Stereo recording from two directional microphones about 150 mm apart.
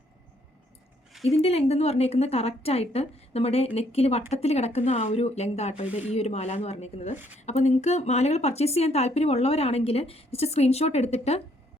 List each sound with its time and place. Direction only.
1.2 s speech: 45° left (ahead or behind)